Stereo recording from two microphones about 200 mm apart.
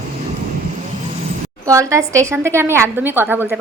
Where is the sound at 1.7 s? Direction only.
15° right (ahead or behind).